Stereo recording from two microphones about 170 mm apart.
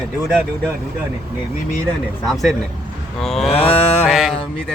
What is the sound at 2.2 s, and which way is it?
Speech, centre (ahead or behind).